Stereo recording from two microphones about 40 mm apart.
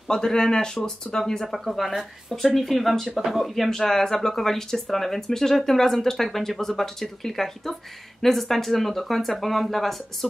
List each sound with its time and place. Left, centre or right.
0.1 s speech: centre
1.5 s speech: centre